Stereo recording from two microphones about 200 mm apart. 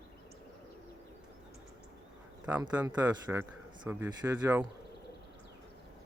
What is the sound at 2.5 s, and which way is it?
Speech, 10° right (ahead or behind).